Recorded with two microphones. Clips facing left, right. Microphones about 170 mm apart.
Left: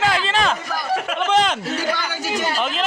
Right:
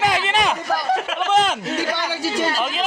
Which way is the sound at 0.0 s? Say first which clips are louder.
Even; 20° right (ahead or behind).